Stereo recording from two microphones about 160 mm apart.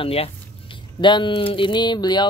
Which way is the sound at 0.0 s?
35° left (ahead or behind).